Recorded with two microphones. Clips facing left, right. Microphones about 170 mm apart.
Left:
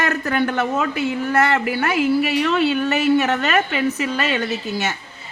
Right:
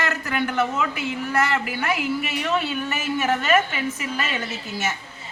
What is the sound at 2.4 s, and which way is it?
A woman's voice, 75° left (ahead or behind).